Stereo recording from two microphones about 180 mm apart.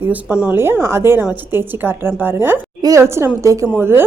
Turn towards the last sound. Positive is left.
turn(degrees=-10)  # may be behind; listen again after turning